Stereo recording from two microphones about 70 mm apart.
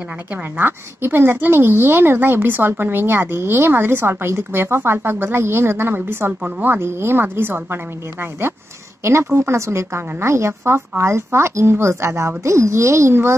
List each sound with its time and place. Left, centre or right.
0.6 s speech: right